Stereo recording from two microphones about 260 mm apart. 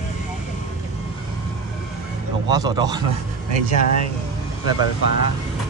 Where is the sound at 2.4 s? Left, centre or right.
Centre.